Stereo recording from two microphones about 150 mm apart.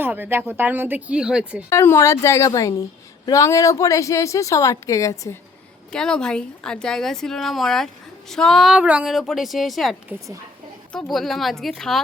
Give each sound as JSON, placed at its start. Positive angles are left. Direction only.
{"t": 0.0, "sound": "speech", "side_deg": -15}
{"t": 1.7, "sound": "speech", "side_deg": 20}
{"t": 5.9, "sound": "speech", "side_deg": 5}